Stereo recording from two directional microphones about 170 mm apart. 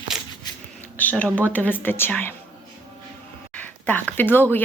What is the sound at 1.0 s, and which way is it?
Speech, 10° left (ahead or behind).